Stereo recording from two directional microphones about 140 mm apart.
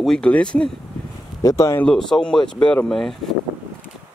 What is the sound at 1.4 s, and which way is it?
Speech, 25° left (ahead or behind).